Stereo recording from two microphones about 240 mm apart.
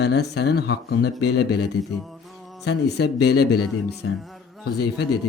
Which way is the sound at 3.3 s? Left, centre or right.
Left.